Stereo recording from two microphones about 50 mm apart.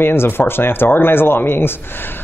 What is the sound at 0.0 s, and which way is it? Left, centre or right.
Speech, left.